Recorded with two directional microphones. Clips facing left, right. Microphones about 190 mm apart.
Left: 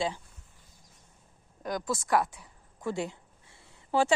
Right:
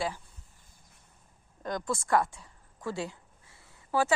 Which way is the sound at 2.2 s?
15° left (ahead or behind).